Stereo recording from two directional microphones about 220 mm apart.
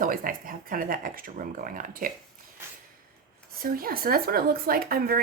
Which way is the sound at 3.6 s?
40° right (ahead or behind).